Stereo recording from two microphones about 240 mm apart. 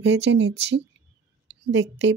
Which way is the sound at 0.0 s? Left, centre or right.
Right.